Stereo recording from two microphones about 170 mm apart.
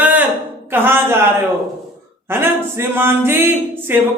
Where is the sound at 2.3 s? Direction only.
15° right (ahead or behind).